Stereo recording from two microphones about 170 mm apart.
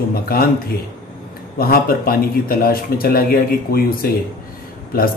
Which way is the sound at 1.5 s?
60° left (ahead or behind).